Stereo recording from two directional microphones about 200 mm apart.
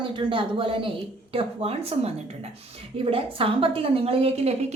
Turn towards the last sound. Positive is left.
turn(degrees=-30)  # may be behind; listen again after turning